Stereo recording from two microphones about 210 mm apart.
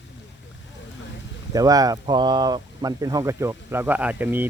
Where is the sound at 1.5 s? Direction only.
15° right (ahead or behind).